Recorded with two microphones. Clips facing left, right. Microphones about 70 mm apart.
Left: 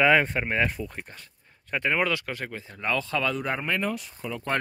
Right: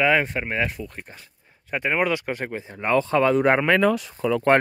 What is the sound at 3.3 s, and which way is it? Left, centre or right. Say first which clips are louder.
Speech: right 10 dB; right.